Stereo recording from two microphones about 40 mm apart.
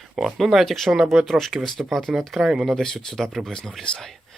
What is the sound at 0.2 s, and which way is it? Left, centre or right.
Speech, centre.